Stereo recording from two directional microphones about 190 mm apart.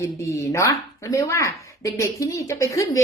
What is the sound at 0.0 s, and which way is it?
Speech, 15° left (ahead or behind).